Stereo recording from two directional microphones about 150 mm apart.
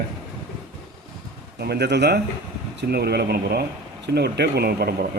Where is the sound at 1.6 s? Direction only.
90° right.